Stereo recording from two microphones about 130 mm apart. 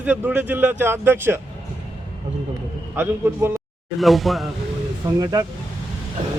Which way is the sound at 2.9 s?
15° right (ahead or behind).